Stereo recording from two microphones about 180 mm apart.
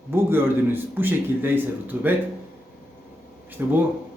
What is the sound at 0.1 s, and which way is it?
A man's voice, 10° right (ahead or behind).